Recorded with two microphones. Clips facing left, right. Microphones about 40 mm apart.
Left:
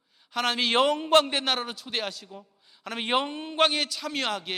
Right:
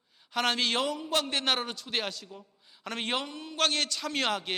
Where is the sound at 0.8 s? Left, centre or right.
Left.